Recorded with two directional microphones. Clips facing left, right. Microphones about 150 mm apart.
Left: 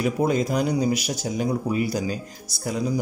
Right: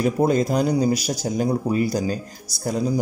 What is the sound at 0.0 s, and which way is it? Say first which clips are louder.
Speech: right 3 dB; 40° right (ahead or behind).